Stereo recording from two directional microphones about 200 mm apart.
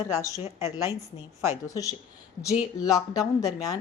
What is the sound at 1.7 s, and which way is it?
A woman's voice, 15° left (ahead or behind).